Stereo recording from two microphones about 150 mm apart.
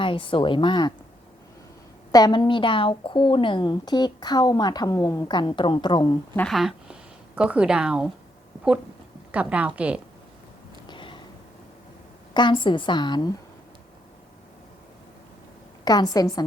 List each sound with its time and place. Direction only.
0.0 s a woman's voice: 35° left (ahead or behind)
2.1 s a woman's voice: 25° left (ahead or behind)
6.3 s a woman's voice: 5° left (ahead or behind)
9.3 s a woman's voice: 10° right (ahead or behind)
10.8 s a sound: 30° left (ahead or behind)
12.3 s a woman's voice: 30° left (ahead or behind)
15.8 s a woman's voice: 30° left (ahead or behind)